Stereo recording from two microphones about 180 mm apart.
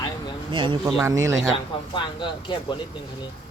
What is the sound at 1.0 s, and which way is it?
Speech, 15° right (ahead or behind).